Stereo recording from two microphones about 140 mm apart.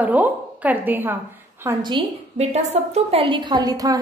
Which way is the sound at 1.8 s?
35° right (ahead or behind).